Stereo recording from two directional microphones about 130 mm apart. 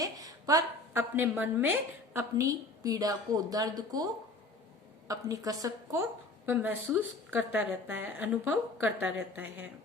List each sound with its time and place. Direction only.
0.0 s a sound: 30° right (ahead or behind)
1.1 s a woman's voice: 15° right (ahead or behind)
2.4 s a woman's voice: 25° right (ahead or behind)